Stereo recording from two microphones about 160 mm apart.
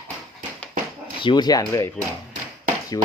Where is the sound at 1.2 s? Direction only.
25° left (ahead or behind).